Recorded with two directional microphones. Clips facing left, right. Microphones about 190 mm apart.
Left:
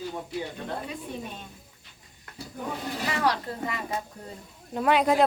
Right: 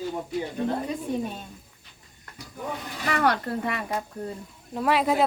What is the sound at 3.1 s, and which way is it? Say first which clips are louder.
Speech: right 5 dB; 60° right (ahead or behind).